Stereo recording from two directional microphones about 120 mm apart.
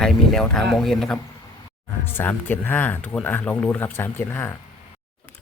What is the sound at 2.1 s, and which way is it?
Speech, 15° left (ahead or behind).